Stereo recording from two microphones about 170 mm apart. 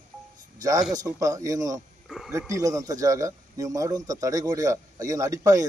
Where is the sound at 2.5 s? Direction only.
20° right (ahead or behind).